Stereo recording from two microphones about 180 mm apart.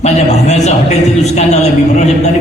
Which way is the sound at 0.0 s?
40° left (ahead or behind).